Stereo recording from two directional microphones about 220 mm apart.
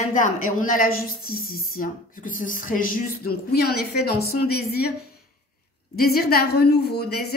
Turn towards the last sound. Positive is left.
turn(degrees=45)  # may be behind; listen again after turning